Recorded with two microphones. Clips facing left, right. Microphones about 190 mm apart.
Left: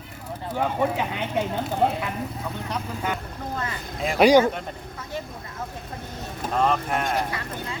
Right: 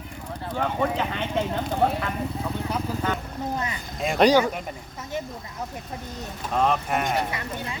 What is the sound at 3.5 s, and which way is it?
Speech, 20° right (ahead or behind).